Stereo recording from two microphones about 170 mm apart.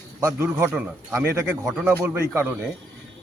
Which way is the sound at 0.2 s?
20° right (ahead or behind).